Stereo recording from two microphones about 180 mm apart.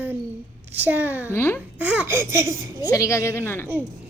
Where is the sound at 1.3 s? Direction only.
10° left (ahead or behind).